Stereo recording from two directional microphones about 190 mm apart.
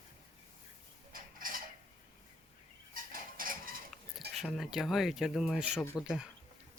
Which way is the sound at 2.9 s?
45° right (ahead or behind).